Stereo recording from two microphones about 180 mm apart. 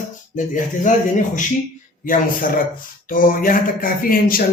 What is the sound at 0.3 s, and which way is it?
Speech, 45° left (ahead or behind).